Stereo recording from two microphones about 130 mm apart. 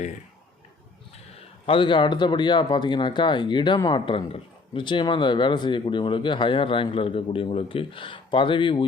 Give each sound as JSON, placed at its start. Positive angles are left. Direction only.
{"t": 1.4, "sound": "speech", "side_deg": 45}